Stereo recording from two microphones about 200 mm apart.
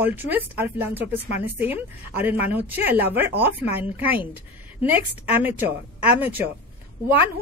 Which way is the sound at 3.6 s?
15° left (ahead or behind).